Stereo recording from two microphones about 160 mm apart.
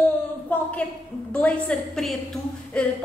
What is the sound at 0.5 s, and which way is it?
Speech, 10° left (ahead or behind).